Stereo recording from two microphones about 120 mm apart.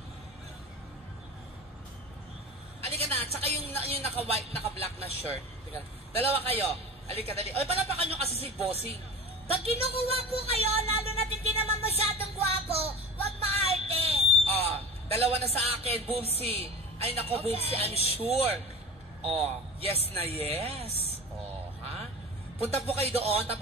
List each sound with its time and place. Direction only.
2.9 s a sound: 55° right (ahead or behind)
3.3 s a man's voice: 55° right (ahead or behind)
9.5 s a sound: 55° right (ahead or behind)
12.5 s music: 55° right (ahead or behind)
13.6 s a woman's voice: 60° right (ahead or behind)
22.6 s a man's voice: 55° right (ahead or behind)